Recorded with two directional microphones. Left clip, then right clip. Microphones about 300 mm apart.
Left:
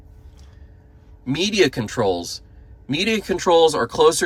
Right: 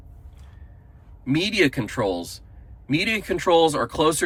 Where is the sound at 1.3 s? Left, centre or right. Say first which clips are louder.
Left 2 dB; centre.